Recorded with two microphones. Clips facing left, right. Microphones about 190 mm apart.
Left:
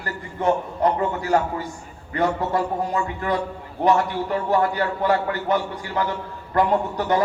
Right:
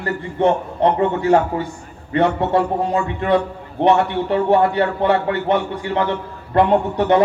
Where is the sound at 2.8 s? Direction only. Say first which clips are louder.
Right 5 dB; 25° right (ahead or behind).